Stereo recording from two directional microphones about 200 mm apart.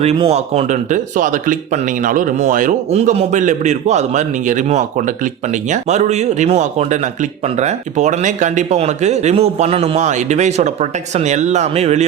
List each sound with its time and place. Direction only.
0.0 s speech: 30° right (ahead or behind)